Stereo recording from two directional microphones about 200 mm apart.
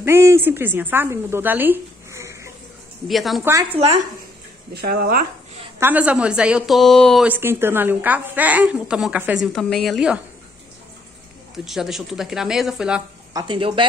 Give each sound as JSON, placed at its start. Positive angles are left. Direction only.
{"t": 0.0, "sound": "speech", "side_deg": -15}
{"t": 3.1, "sound": "a woman's voice", "side_deg": 0}
{"t": 4.8, "sound": "speech", "side_deg": -50}
{"t": 5.8, "sound": "a woman's voice", "side_deg": -10}
{"t": 7.2, "sound": "a woman's voice", "side_deg": -10}
{"t": 11.5, "sound": "a woman's voice", "side_deg": 0}
{"t": 13.3, "sound": "a woman's voice", "side_deg": -20}